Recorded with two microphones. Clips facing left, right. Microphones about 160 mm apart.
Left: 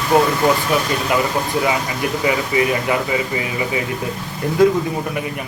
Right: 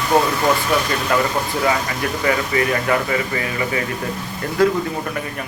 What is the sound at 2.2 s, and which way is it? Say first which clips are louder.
A man's voice: left 1 dB; 15° left (ahead or behind).